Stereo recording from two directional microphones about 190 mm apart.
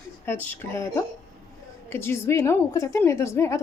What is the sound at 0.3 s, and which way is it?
A woman's voice, 10° left (ahead or behind).